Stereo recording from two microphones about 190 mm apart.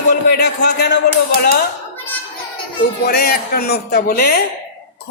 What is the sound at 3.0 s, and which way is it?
A woman's voice, 55° left (ahead or behind).